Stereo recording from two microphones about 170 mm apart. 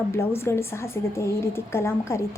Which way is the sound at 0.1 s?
15° left (ahead or behind).